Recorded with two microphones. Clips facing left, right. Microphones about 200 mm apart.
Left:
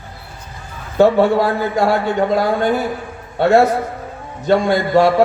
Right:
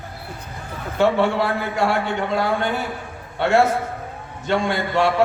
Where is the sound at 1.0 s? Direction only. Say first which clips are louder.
Left 6 dB; 40° left (ahead or behind).